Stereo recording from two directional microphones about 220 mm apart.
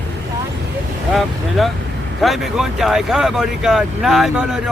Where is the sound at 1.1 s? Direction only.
Centre (ahead or behind).